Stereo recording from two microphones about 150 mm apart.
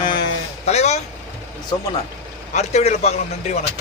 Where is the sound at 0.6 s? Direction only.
45° left (ahead or behind).